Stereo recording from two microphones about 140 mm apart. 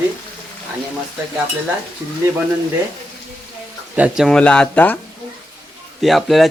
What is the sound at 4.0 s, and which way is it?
Speech, centre (ahead or behind).